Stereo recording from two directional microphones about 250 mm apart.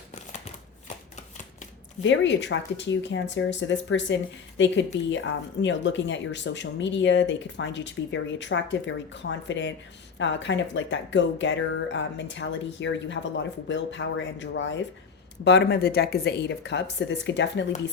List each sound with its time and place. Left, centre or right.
2.0 s speech: left